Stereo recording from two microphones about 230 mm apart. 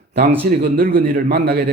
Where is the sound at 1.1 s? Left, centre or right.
Right.